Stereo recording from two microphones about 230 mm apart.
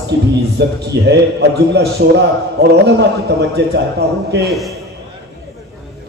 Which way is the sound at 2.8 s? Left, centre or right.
Right.